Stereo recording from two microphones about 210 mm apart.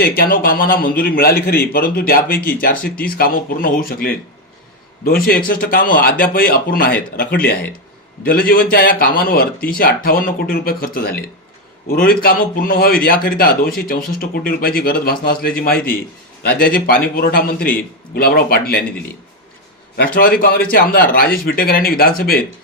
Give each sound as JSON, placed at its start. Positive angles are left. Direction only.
{"t": 0.0, "sound": "speech", "side_deg": 45}
{"t": 20.0, "sound": "speech", "side_deg": 45}